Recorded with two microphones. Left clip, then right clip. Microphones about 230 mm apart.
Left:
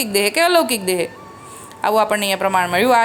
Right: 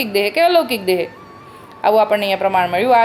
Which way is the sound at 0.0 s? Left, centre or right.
Left.